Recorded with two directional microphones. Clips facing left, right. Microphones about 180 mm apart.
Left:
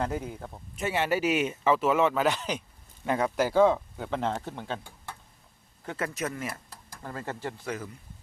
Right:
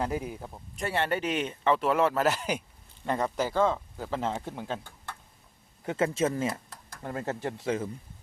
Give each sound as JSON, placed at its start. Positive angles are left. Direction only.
{"t": 0.0, "sound": "speech", "side_deg": -10}
{"t": 0.8, "sound": "speech", "side_deg": 5}
{"t": 3.6, "sound": "speech", "side_deg": 15}
{"t": 3.9, "sound": "speech", "side_deg": 0}
{"t": 5.8, "sound": "speech", "side_deg": -25}